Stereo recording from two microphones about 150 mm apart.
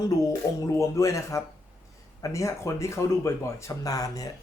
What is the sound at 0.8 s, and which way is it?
Speech, 20° left (ahead or behind).